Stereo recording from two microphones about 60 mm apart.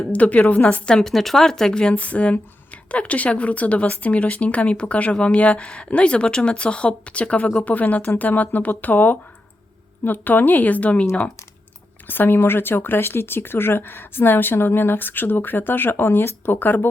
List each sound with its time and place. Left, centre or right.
0.1 s speech: left
0.7 s a woman's voice: centre
12.0 s speech: left